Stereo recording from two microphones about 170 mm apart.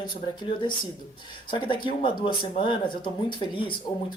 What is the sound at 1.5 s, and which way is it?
Speech, 30° left (ahead or behind).